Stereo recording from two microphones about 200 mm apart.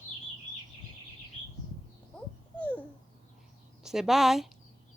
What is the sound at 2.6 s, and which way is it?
Babbling, 5° left (ahead or behind).